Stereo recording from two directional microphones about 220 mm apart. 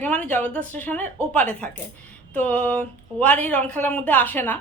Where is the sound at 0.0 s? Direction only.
5° left (ahead or behind).